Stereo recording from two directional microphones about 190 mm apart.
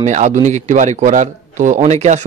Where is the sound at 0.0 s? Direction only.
40° right (ahead or behind).